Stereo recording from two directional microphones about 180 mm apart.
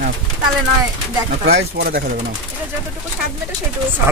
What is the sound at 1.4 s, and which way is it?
Speech, 60° right (ahead or behind).